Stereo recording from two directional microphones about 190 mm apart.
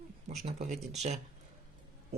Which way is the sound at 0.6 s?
35° right (ahead or behind).